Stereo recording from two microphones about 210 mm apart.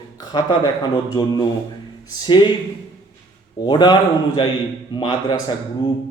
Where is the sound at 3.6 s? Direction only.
20° left (ahead or behind).